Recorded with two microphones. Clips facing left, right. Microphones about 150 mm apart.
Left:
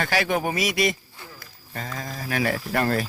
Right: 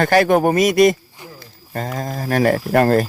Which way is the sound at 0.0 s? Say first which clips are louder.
Right 10 dB; 50° right (ahead or behind).